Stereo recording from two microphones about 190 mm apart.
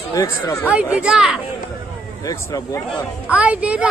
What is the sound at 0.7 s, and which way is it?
Speech, 5° right (ahead or behind).